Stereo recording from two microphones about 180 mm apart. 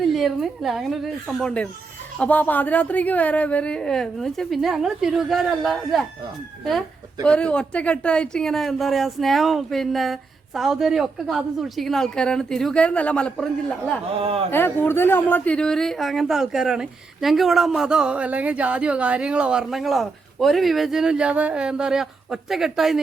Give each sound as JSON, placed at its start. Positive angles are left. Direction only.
{"t": 0.0, "sound": "speech", "side_deg": 0}
{"t": 7.3, "sound": "speech", "side_deg": 5}
{"t": 14.2, "sound": "speech", "side_deg": -30}
{"t": 14.5, "sound": "speech", "side_deg": 10}